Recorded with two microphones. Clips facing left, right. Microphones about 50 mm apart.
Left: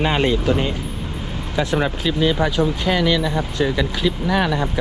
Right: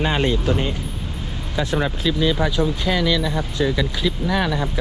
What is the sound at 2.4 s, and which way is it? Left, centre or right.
Speech, left.